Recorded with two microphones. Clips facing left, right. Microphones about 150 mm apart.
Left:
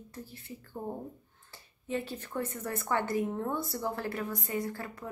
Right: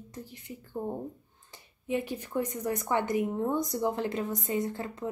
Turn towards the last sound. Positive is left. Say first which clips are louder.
# right 4 dB
turn(degrees=-20)  # may be behind; listen again after turning